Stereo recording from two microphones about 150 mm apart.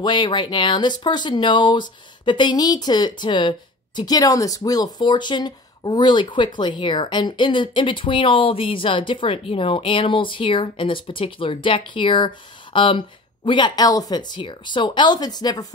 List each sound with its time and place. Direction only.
0.0 s speech: 30° left (ahead or behind)